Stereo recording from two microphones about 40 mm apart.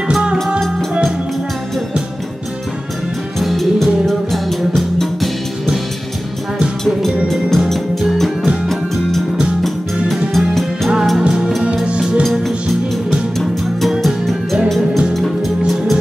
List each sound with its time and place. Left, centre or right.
0.2 s music: right
3.3 s music: centre
7.2 s music: centre
8.6 s music: centre
10.3 s music: centre
11.1 s music: centre
11.8 s music: right
12.2 s music: centre